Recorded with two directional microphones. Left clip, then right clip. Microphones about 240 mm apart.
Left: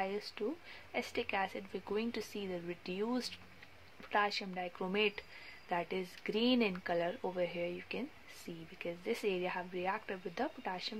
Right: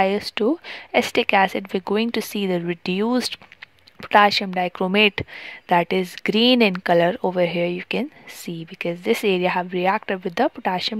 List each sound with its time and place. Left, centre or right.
0.0 s speech: right